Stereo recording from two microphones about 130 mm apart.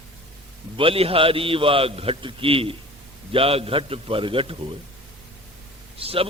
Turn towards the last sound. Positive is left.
turn(degrees=-45)  # may be behind; listen again after turning